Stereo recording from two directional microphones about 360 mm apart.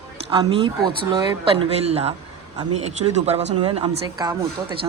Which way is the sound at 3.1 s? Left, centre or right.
Centre.